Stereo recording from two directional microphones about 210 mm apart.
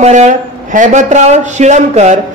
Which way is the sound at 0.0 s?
35° right (ahead or behind).